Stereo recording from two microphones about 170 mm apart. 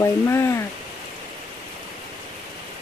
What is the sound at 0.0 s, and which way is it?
Speech, 15° left (ahead or behind).